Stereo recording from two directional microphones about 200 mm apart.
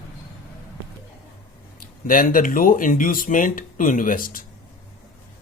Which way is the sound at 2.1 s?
45° left (ahead or behind).